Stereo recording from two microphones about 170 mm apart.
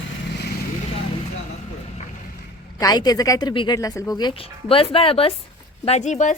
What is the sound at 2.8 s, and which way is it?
Speech, 25° left (ahead or behind).